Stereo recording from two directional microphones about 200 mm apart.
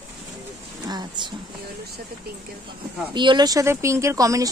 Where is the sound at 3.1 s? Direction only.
25° right (ahead or behind).